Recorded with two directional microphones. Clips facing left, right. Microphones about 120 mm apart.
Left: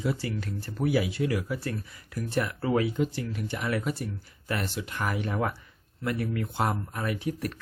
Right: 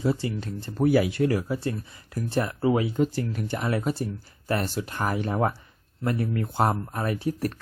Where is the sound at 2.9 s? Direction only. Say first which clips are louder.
Right 4 dB; 40° right (ahead or behind).